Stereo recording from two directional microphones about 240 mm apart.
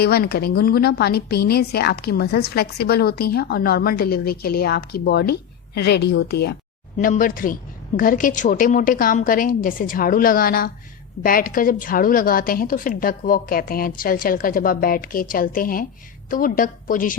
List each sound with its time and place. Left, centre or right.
0.0 s speech: left